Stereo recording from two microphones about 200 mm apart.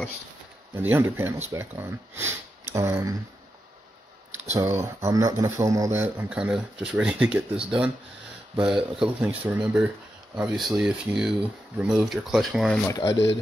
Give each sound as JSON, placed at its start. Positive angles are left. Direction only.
{"t": 0.7, "sound": "speech", "side_deg": -10}
{"t": 4.6, "sound": "speech", "side_deg": -10}
{"t": 12.9, "sound": "speech", "side_deg": 20}